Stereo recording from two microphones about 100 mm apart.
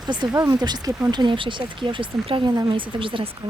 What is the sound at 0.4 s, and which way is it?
Speech, 40° right (ahead or behind).